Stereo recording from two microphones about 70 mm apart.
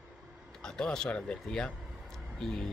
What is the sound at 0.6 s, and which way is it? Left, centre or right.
Speech, centre.